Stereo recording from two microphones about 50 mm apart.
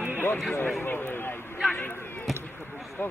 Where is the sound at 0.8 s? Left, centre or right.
Left.